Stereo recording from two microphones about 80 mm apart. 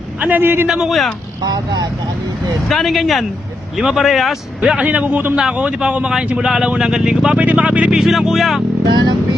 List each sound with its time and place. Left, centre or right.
0.2 s a man's voice: right
0.7 s speech: centre
1.4 s speech: right
2.6 s speech: centre
4.8 s speech: centre